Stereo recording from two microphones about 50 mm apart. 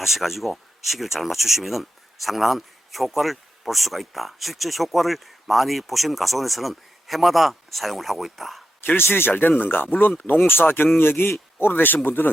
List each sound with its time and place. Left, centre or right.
0.0 s speech: centre
9.0 s speech: left